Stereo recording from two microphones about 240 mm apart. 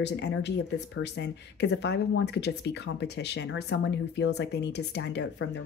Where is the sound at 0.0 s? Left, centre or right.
Left.